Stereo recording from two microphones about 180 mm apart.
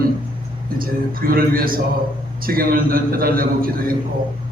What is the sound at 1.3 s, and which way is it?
A man's voice, 55° right (ahead or behind).